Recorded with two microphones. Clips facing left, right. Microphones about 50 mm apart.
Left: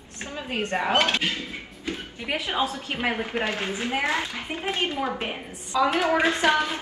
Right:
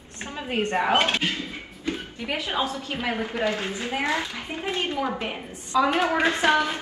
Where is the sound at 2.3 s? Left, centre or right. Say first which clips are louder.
Left 1 dB; left.